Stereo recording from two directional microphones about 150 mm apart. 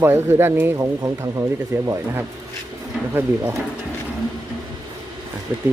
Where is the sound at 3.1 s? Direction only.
15° right (ahead or behind).